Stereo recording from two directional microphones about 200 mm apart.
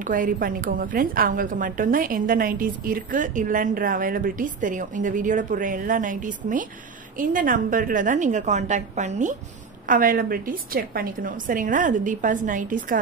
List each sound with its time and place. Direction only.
0.0 s a woman's voice: 40° right (ahead or behind)